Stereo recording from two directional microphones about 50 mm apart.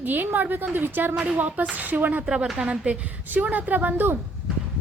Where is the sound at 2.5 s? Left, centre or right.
Right.